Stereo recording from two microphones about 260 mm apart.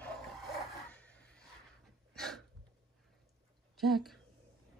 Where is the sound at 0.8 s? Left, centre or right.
Centre.